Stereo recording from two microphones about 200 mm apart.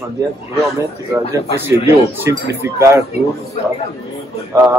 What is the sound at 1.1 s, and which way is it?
A man's voice, 10° right (ahead or behind).